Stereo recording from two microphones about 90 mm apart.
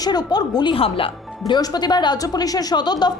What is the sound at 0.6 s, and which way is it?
Speech, 75° left (ahead or behind).